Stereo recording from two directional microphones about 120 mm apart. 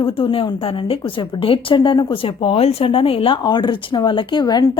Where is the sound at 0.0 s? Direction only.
50° left (ahead or behind).